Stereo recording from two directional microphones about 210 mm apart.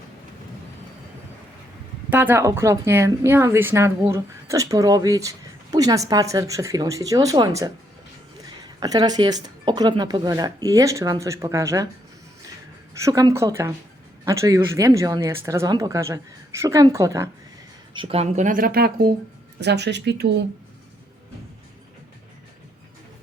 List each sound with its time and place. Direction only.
2.0 s a woman's voice: 10° right (ahead or behind)
13.1 s a woman's voice: 15° right (ahead or behind)
17.9 s speech: 25° right (ahead or behind); by 20.4 s 50° right (ahead or behind)